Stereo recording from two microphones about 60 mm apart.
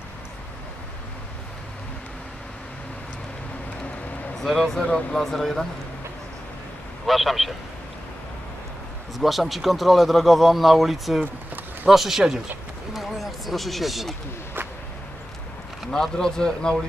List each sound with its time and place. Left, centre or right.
4.4 s speech: centre
4.8 s speech: centre
5.2 s speech: centre
7.1 s speech: centre
9.2 s speech: centre
12.9 s a sound: centre
15.9 s speech: centre